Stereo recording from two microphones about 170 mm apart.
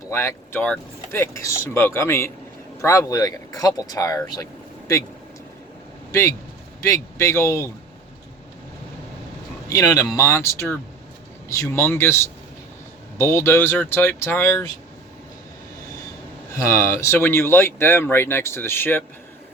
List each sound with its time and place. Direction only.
0.1 s speech: 15° left (ahead or behind)
6.8 s speech: 15° left (ahead or behind)
9.6 s speech: 20° left (ahead or behind)
16.5 s speech: 15° left (ahead or behind)